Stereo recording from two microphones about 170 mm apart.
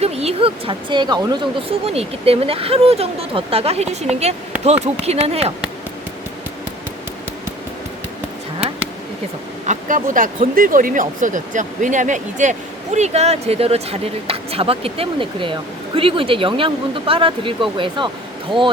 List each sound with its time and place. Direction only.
0.0 s speech: 35° right (ahead or behind)
9.6 s speech: 50° right (ahead or behind); by 18.1 s 30° right (ahead or behind)